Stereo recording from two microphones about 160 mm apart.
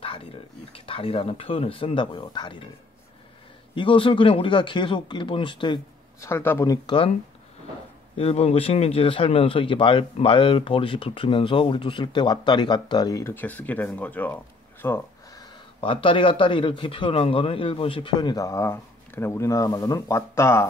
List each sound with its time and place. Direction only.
0.0 s a sound: 35° left (ahead or behind)
0.7 s speech: 35° left (ahead or behind)
3.7 s speech: 30° left (ahead or behind)
6.2 s speech: 15° left (ahead or behind)
8.2 s speech: 40° left (ahead or behind); by 15.0 s 15° left (ahead or behind)
15.3 s speech: 30° left (ahead or behind); by 20.6 s 15° left (ahead or behind)